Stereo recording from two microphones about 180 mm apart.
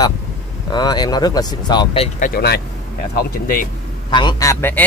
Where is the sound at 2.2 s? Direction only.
60° left (ahead or behind).